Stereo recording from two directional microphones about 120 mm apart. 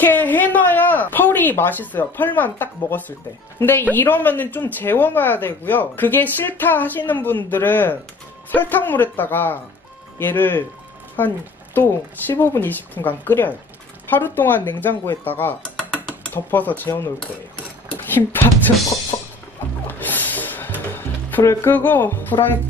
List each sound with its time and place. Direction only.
0.0 s speech: 15° left (ahead or behind)
15.7 s a sound: 10° left (ahead or behind)
18.1 s speech: 15° left (ahead or behind)
19.1 s music: 30° left (ahead or behind)
19.9 s music: 15° left (ahead or behind)
20.9 s speech: 15° left (ahead or behind)